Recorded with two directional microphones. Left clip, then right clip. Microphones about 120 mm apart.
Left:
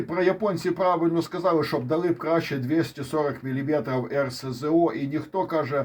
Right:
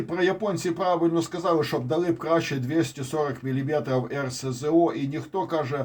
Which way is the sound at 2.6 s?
40° left (ahead or behind).